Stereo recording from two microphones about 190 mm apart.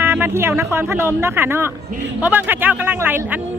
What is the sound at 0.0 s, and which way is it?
Speech, 10° right (ahead or behind).